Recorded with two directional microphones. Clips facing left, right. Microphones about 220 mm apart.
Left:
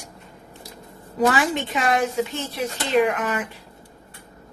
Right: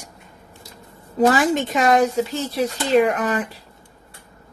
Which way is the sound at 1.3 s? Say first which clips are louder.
Right 4 dB; 40° right (ahead or behind).